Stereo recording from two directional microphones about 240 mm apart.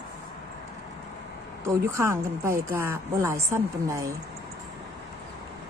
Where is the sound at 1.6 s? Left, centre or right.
Centre.